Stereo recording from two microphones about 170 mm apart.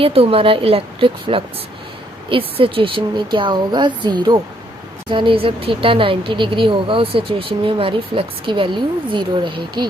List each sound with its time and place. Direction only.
0.0 s speech: 35° right (ahead or behind)
2.6 s a woman's voice: 30° right (ahead or behind)